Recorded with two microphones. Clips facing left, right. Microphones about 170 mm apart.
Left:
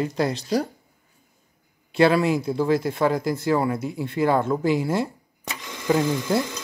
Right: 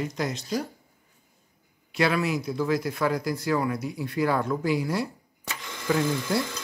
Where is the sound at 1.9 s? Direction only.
30° left (ahead or behind).